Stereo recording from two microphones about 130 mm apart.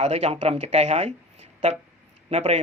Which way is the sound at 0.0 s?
60° right (ahead or behind).